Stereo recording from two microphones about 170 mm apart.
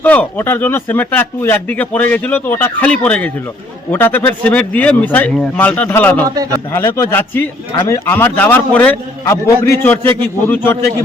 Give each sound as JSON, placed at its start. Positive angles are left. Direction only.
{"t": 0.0, "sound": "speech", "side_deg": 10}
{"t": 6.2, "sound": "a man's voice", "side_deg": -20}
{"t": 6.7, "sound": "speech", "side_deg": 15}